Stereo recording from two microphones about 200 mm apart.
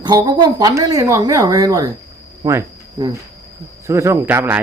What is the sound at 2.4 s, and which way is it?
Cricket, 15° right (ahead or behind).